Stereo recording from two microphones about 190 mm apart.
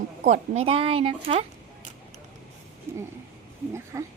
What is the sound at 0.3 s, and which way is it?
Speech, 30° right (ahead or behind).